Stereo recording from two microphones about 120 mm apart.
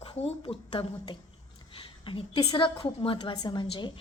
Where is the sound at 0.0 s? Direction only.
50° left (ahead or behind).